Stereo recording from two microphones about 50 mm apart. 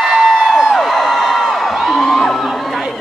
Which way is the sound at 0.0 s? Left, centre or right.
Centre.